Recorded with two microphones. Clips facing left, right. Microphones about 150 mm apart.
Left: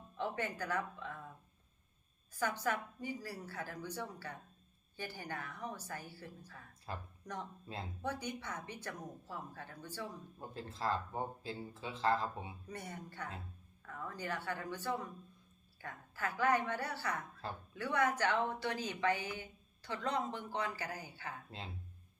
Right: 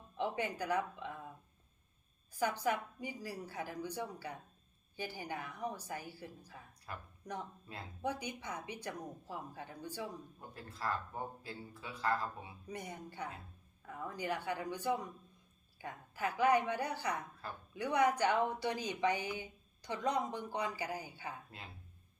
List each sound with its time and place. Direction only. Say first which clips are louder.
0.2 s speech: right 2 dB; 15° right (ahead or behind)
2.3 s a woman's voice: right 2 dB; 15° right (ahead or behind)
6.9 s speech: left 3 dB; 30° left (ahead or behind)
7.3 s a woman's voice: right 1 dB; 10° right (ahead or behind)
10.5 s speech: left 2 dB; 25° left (ahead or behind)
12.6 s a woman's voice: right 1 dB; 15° right (ahead or behind)